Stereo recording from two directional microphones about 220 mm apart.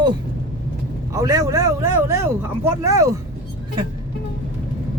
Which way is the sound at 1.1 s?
15° right (ahead or behind).